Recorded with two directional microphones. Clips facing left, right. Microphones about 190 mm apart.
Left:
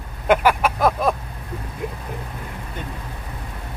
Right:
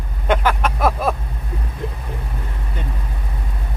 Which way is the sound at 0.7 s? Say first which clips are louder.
Even; 5° right (ahead or behind).